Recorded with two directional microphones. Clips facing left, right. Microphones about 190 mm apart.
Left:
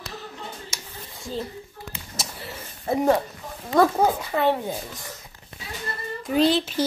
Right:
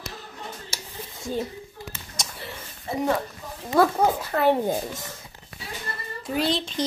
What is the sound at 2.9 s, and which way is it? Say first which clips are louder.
Speech: left 5 dB; 50° left (ahead or behind).